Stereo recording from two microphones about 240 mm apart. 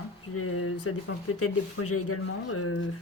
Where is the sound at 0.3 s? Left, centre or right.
Left.